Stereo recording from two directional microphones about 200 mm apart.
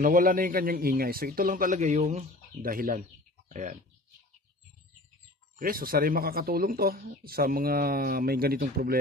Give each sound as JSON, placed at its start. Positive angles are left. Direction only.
{"t": 0.0, "sound": "speech", "side_deg": -45}
{"t": 5.6, "sound": "speech", "side_deg": -45}